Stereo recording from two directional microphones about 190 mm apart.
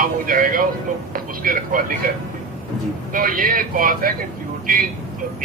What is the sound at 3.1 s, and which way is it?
Speech, 45° right (ahead or behind).